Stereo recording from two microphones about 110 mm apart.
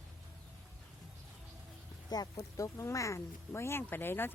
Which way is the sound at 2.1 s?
40° left (ahead or behind).